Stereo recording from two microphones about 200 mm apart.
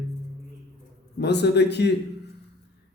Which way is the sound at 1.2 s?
60° left (ahead or behind).